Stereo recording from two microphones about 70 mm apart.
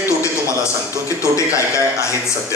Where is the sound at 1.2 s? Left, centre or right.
Left.